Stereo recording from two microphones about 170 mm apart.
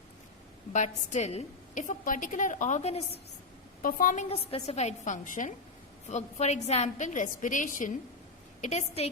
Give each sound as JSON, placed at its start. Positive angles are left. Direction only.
{"t": 0.7, "sound": "a woman's voice", "side_deg": 45}
{"t": 3.8, "sound": "a woman's voice", "side_deg": 55}